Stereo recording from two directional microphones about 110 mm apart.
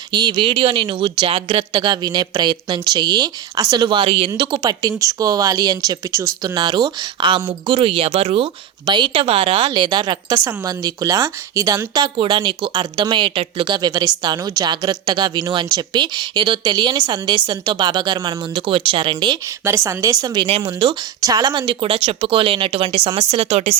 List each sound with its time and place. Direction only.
0.1 s a woman's voice: 45° right (ahead or behind); by 6.3 s 25° right (ahead or behind)
6.4 s a woman's voice: 40° right (ahead or behind)
19.6 s a woman's voice: 25° right (ahead or behind); by 20.9 s 50° right (ahead or behind)
21.2 s speech: 35° right (ahead or behind); by 23.7 s 70° right (ahead or behind)